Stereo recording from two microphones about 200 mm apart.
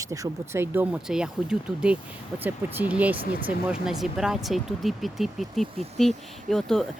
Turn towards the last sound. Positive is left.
turn(degrees=0)  # may be behind; listen again after turning